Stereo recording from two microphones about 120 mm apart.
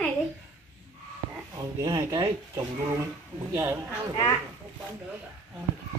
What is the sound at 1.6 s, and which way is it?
Speech, 30° right (ahead or behind).